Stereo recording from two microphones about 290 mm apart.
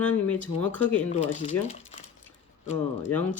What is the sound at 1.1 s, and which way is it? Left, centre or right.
Speech, left.